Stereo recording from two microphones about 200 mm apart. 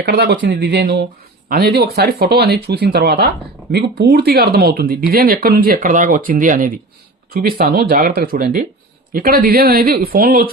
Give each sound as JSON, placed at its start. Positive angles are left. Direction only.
{"t": 0.0, "sound": "speech", "side_deg": -55}